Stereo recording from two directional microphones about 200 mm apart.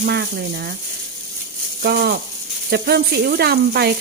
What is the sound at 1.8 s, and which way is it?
Speech, 50° right (ahead or behind).